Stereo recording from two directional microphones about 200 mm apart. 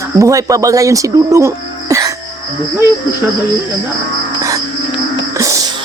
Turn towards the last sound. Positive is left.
turn(degrees=-15)  # may be behind; listen again after turning